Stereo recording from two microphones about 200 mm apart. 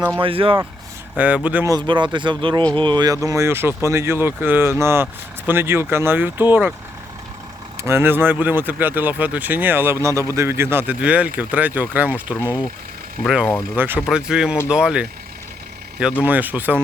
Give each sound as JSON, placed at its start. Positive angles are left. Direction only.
{"t": 0.2, "sound": "speech", "side_deg": -25}
{"t": 1.1, "sound": "speech", "side_deg": -10}
{"t": 1.7, "sound": "speech", "side_deg": -25}
{"t": 7.9, "sound": "speech", "side_deg": -10}
{"t": 16.2, "sound": "speech", "side_deg": -10}